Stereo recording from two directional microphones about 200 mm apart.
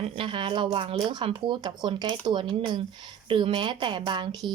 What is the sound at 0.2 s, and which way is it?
Speech, 25° right (ahead or behind).